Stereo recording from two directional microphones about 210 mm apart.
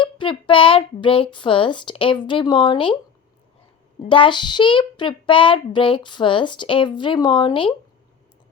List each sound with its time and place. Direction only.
0.0 s speech: 25° left (ahead or behind)
4.1 s speech: 25° left (ahead or behind)